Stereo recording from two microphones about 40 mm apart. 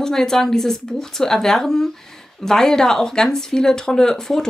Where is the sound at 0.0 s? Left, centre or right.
Centre.